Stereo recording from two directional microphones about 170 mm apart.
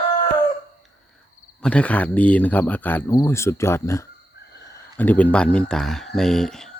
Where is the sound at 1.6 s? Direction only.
5° left (ahead or behind).